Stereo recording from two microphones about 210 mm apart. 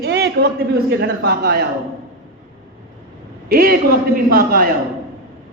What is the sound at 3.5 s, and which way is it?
A man's voice, 45° right (ahead or behind).